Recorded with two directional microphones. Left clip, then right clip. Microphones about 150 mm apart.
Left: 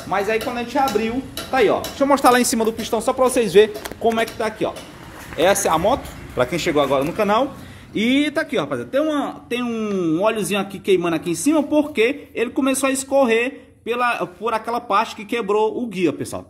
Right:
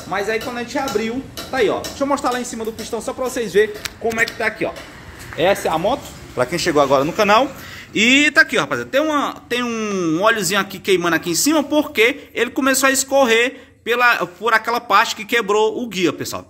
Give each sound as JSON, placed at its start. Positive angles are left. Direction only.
{"t": 0.1, "sound": "a man's voice", "side_deg": 10}
{"t": 1.8, "sound": "speech", "side_deg": 30}
{"t": 2.2, "sound": "speech", "side_deg": 85}
{"t": 2.8, "sound": "a man's voice", "side_deg": 35}
{"t": 7.9, "sound": "a man's voice", "side_deg": 10}